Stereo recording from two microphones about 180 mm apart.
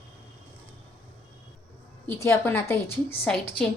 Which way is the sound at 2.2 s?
15° left (ahead or behind).